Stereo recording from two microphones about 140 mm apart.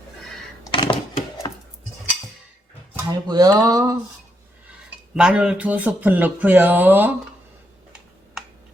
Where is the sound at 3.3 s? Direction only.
30° right (ahead or behind).